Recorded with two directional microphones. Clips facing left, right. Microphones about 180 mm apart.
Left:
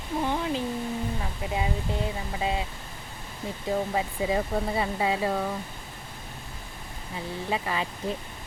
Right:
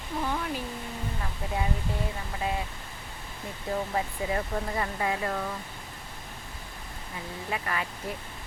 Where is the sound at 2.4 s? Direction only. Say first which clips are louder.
Left 2 dB; 20° left (ahead or behind).